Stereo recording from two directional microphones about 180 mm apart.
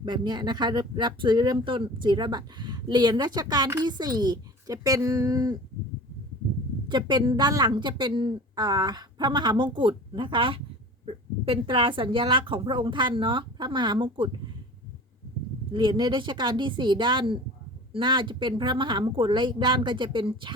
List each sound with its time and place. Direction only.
0.0 s speech: 25° right (ahead or behind)
6.8 s speech: 25° right (ahead or behind)
15.7 s speech: 25° right (ahead or behind)